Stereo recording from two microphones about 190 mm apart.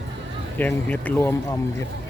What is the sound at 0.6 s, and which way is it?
Speech, 10° left (ahead or behind).